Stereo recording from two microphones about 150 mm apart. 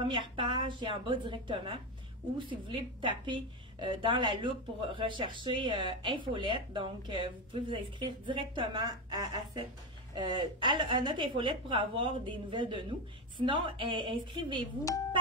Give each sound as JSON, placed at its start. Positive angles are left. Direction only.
{"t": 0.0, "sound": "speech", "side_deg": -35}